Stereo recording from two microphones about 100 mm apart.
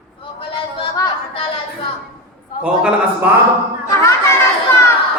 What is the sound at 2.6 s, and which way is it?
Speech, 15° right (ahead or behind).